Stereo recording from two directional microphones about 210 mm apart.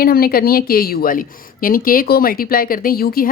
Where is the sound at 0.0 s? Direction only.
45° left (ahead or behind).